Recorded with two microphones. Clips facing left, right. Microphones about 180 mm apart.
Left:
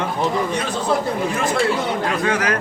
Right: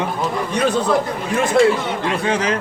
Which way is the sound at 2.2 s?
30° right (ahead or behind).